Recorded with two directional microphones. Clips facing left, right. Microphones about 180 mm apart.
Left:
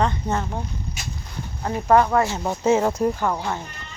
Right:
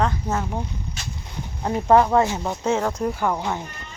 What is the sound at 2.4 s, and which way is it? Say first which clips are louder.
Speech: left 3 dB; 5° left (ahead or behind).